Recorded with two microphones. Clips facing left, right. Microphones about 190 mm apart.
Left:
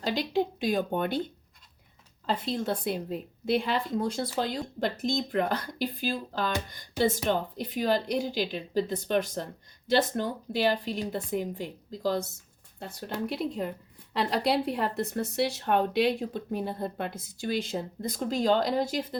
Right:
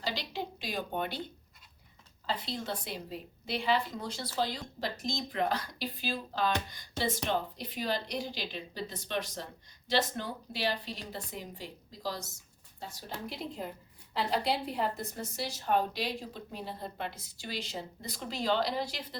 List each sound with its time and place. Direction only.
0.0 s a woman's voice: 50° left (ahead or behind)
2.2 s a woman's voice: 50° left (ahead or behind)